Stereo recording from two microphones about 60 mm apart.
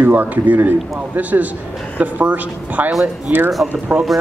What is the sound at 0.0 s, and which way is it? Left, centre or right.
A man's voice, right.